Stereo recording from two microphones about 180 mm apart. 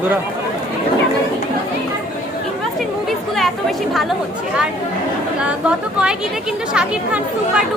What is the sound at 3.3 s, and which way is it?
Speech, centre (ahead or behind).